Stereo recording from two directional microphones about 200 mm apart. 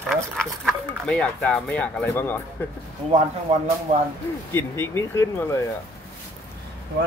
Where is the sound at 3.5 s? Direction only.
30° right (ahead or behind).